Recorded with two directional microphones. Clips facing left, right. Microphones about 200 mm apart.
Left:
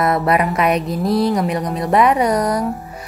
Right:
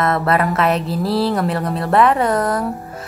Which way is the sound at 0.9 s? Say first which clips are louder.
Left 1 dB; 30° right (ahead or behind).